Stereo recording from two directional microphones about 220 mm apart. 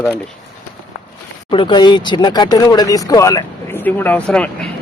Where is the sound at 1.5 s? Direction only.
20° left (ahead or behind); by 4.7 s 5° left (ahead or behind).